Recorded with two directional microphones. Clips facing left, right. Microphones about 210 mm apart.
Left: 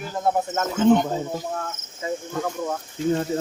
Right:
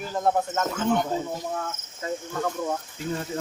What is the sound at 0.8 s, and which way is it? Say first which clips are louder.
Speech: left 9 dB; 20° left (ahead or behind).